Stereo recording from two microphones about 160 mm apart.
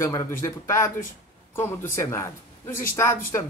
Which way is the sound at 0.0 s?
20° left (ahead or behind).